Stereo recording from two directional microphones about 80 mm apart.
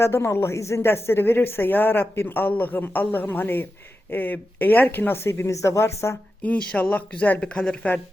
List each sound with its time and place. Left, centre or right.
0.0 s a woman's voice: left
6.4 s speech: centre